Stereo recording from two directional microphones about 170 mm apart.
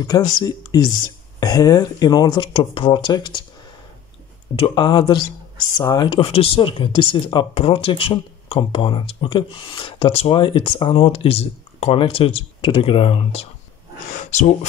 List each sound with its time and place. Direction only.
0.0 s speech: 20° left (ahead or behind)
4.6 s speech: 30° left (ahead or behind)